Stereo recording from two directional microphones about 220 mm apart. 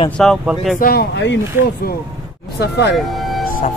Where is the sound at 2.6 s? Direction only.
50° left (ahead or behind).